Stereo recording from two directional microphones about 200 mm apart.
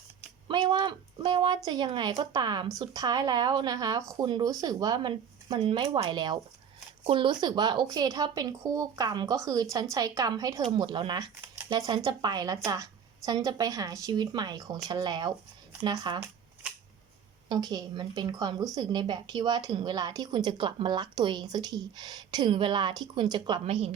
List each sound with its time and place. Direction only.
0.4 s a woman's voice: 25° right (ahead or behind)
17.5 s speech: 20° right (ahead or behind)